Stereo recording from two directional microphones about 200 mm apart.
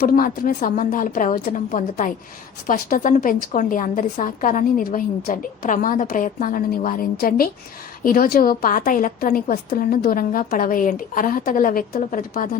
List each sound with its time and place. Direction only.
0.0 s a woman's voice: 45° left (ahead or behind)